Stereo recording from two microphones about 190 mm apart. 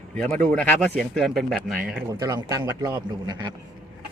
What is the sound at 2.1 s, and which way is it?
A man's voice, 20° right (ahead or behind).